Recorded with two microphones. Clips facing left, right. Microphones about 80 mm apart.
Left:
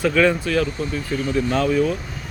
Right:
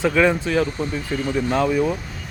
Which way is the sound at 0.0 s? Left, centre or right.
Centre.